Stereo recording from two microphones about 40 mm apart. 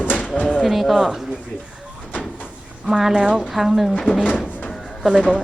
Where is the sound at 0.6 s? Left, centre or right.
Centre.